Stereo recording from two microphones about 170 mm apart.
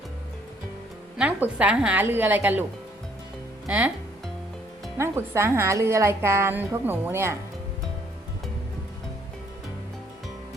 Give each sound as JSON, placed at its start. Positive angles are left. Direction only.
{"t": 1.2, "sound": "a woman's voice", "side_deg": -10}
{"t": 3.7, "sound": "a woman's voice", "side_deg": -10}
{"t": 4.9, "sound": "a woman's voice", "side_deg": -15}